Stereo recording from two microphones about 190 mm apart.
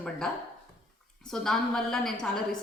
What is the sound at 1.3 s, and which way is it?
Speech, centre (ahead or behind).